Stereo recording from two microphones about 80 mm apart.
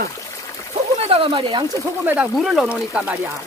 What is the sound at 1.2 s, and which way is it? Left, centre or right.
Speech, right.